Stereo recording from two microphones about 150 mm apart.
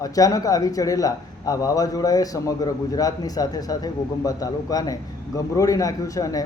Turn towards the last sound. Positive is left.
turn(degrees=25)  # may be behind; listen again after turning